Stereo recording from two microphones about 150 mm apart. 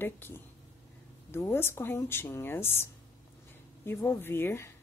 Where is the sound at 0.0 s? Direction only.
15° left (ahead or behind).